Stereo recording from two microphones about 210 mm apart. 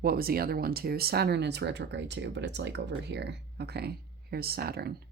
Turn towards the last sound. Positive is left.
turn(degrees=-50)  # may be behind; listen again after turning